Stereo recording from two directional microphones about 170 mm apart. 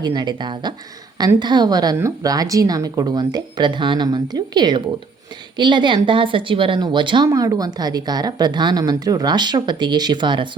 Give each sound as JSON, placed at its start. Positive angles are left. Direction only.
{"t": 0.0, "sound": "a woman's voice", "side_deg": -25}